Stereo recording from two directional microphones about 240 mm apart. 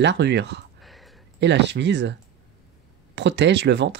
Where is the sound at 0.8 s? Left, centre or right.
Centre.